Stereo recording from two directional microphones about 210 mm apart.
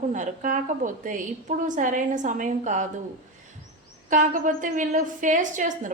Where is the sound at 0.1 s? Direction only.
35° right (ahead or behind).